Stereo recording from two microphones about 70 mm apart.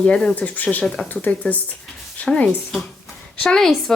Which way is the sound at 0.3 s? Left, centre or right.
Left.